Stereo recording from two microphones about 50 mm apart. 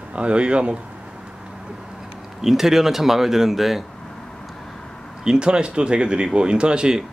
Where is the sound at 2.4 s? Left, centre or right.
Centre.